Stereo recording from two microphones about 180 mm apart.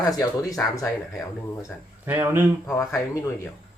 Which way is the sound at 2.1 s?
10° right (ahead or behind).